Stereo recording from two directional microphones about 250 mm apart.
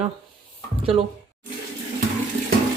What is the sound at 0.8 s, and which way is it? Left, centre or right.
Speech, right.